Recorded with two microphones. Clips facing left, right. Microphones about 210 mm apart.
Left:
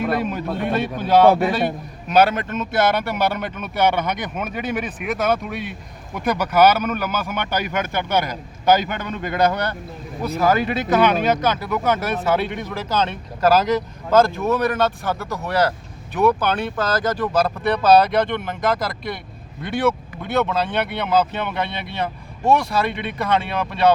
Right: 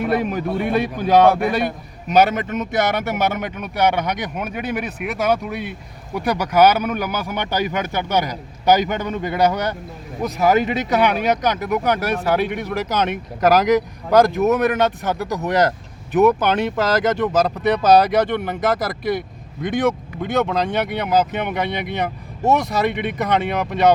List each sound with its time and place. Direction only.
0.0 s speech: 10° right (ahead or behind)
19.6 s speech: 15° right (ahead or behind)